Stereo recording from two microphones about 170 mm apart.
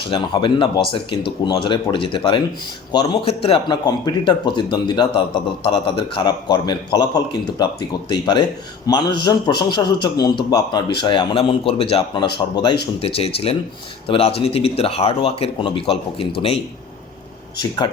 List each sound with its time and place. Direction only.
0.1 s a man's voice: 30° left (ahead or behind)